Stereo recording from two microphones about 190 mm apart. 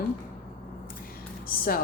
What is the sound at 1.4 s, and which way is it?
Speech, 50° left (ahead or behind).